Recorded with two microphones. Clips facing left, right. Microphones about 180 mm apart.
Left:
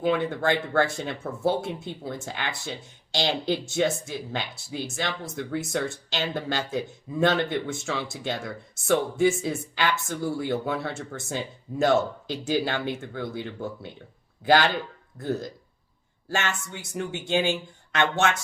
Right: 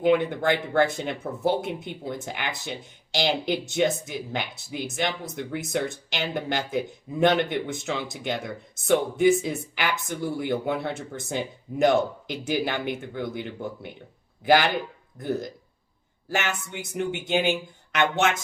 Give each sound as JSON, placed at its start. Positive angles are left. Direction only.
{"t": 0.0, "sound": "speech", "side_deg": -20}